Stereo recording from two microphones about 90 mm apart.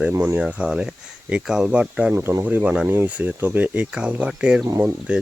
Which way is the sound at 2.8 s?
25° right (ahead or behind).